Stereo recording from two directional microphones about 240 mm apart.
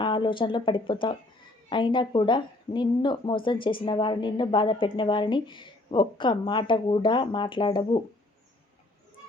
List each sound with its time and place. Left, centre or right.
0.0 s speech: centre